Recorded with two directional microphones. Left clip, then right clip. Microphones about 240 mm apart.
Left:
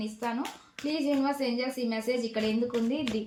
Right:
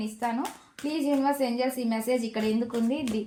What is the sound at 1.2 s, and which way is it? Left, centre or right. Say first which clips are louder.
Speech: right 4 dB; right.